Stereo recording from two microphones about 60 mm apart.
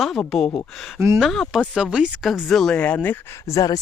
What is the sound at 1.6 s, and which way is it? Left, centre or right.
Speech, centre.